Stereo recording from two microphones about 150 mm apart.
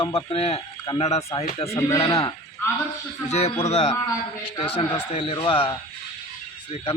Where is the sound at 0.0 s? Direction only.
40° left (ahead or behind).